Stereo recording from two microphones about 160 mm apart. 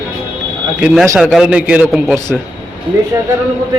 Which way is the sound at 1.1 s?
5° right (ahead or behind).